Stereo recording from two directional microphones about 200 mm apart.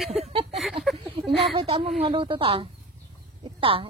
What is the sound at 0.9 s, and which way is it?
Speech, centre (ahead or behind).